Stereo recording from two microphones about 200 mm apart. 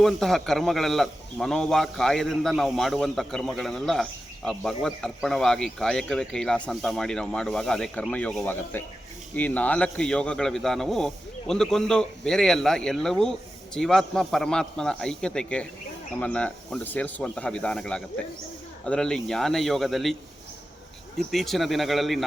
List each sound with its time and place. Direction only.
0.0 s a man's voice: centre (ahead or behind)
21.2 s a man's voice: centre (ahead or behind)